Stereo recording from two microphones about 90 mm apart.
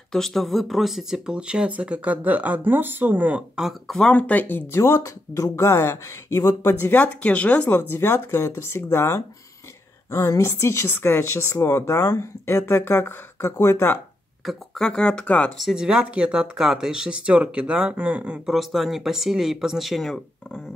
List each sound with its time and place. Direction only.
0.1 s speech: 5° left (ahead or behind); by 3.4 s 15° right (ahead or behind)
3.5 s speech: centre (ahead or behind)
4.1 s speech: 15° left (ahead or behind)
4.7 s speech: 35° left (ahead or behind)
6.7 s speech: 20° left (ahead or behind)
7.9 s speech: 25° left (ahead or behind)
14.4 s speech: centre (ahead or behind)
15.5 s speech: 5° right (ahead or behind)
18.5 s speech: centre (ahead or behind)